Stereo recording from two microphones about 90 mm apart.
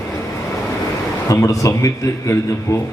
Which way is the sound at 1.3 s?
35° left (ahead or behind).